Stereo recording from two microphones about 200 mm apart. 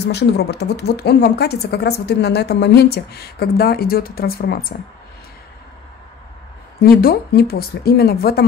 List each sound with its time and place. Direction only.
0.1 s a woman's voice: 55° left (ahead or behind)
6.8 s speech: 50° left (ahead or behind)